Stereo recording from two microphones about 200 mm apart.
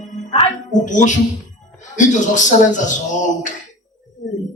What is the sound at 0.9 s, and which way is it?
A man's voice, 40° left (ahead or behind).